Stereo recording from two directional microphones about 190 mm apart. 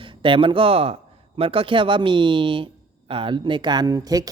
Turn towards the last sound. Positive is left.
turn(degrees=-20)  # may be behind; listen again after turning